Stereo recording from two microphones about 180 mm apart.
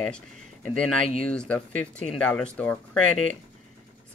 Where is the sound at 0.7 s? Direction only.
5° left (ahead or behind).